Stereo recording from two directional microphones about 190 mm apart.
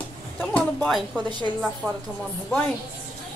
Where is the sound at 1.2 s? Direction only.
25° right (ahead or behind).